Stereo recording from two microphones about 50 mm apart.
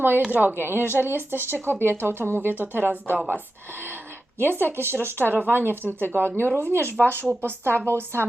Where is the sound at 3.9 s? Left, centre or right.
Right.